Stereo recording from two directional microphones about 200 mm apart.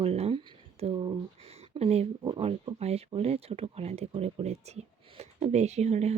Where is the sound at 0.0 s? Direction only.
30° right (ahead or behind).